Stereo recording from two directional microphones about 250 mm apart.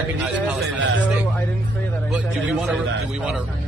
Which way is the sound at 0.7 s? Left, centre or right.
Right.